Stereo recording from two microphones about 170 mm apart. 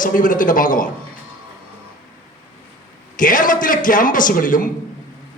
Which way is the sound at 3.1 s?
50° left (ahead or behind).